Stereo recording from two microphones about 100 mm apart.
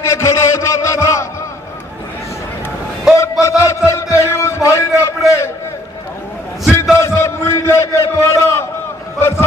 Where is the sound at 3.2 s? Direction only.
30° left (ahead or behind).